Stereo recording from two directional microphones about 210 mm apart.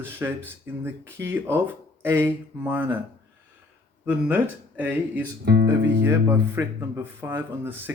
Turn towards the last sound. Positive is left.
turn(degrees=-10)  # may be behind; listen again after turning